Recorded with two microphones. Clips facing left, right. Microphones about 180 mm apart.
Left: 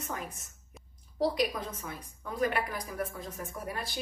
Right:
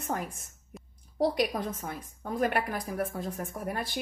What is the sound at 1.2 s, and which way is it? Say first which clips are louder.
A woman's voice: right 2 dB; 55° right (ahead or behind).